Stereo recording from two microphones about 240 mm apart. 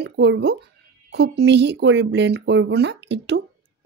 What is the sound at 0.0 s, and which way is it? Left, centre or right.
Speech, right.